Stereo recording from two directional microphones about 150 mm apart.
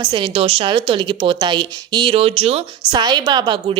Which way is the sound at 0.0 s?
35° right (ahead or behind).